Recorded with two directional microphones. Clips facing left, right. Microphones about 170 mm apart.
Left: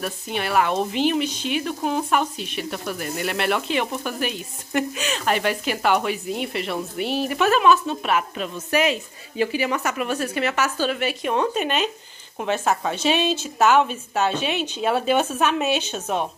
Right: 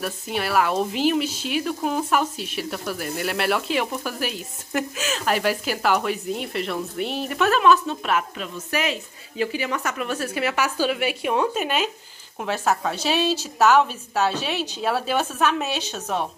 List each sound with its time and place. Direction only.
0.0 s speech: 5° right (ahead or behind)
8.4 s a woman's voice: 20° left (ahead or behind); by 16.3 s 5° left (ahead or behind)